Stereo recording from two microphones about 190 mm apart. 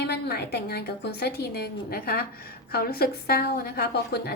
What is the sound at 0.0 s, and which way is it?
A woman's voice, 55° left (ahead or behind).